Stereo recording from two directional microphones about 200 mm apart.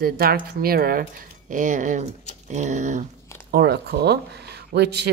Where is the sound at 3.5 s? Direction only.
55° right (ahead or behind).